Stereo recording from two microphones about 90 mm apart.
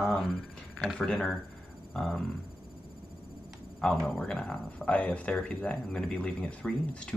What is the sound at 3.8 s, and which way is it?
Speech, 5° left (ahead or behind).